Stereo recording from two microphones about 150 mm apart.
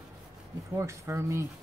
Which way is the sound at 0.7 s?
20° right (ahead or behind).